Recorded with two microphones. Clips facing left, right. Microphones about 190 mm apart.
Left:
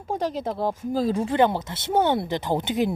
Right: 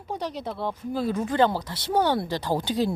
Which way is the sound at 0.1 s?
50° left (ahead or behind).